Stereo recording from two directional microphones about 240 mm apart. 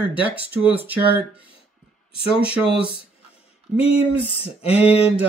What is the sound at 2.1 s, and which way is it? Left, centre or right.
Speech, left.